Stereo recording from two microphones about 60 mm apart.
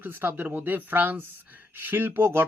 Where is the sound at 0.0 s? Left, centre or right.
Right.